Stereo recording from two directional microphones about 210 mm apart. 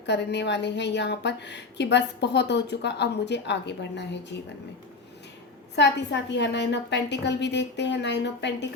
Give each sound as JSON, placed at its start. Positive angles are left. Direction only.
{"t": 0.0, "sound": "a woman's voice", "side_deg": 55}
{"t": 5.7, "sound": "a woman's voice", "side_deg": 55}